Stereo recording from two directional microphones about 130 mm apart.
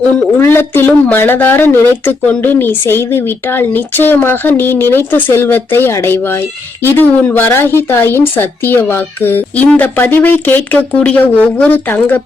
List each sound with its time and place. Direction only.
0.3 s speech: 15° left (ahead or behind)